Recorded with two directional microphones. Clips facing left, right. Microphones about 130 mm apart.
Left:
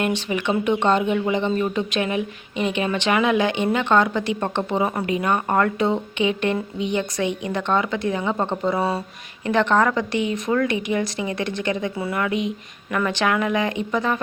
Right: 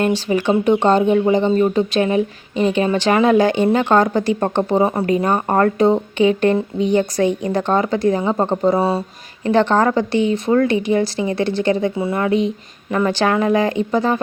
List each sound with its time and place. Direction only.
0.0 s speech: 35° right (ahead or behind)